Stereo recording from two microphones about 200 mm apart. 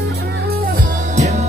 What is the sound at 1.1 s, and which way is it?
Music, 35° right (ahead or behind).